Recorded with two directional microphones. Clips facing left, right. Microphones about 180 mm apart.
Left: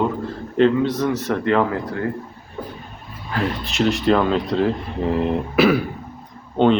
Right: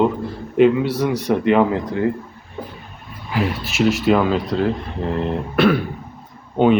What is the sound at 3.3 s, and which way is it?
Speech, 5° right (ahead or behind).